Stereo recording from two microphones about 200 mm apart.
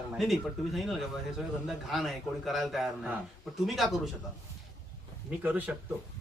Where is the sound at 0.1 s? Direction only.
Centre (ahead or behind).